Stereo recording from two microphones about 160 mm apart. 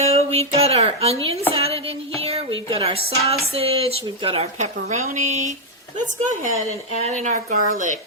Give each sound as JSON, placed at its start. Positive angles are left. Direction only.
{"t": 0.0, "sound": "a sound", "side_deg": -40}
{"t": 1.5, "sound": "music", "side_deg": -40}
{"t": 2.2, "sound": "a woman's voice", "side_deg": -35}
{"t": 7.0, "sound": "a woman's voice", "side_deg": -50}